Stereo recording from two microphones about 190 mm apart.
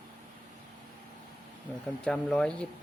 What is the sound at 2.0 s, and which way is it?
Speech, 5° left (ahead or behind).